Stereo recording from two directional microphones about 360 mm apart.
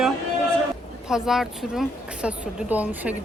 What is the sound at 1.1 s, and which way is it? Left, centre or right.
Speech, centre.